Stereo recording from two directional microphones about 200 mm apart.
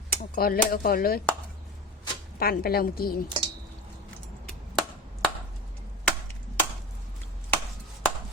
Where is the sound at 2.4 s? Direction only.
50° left (ahead or behind).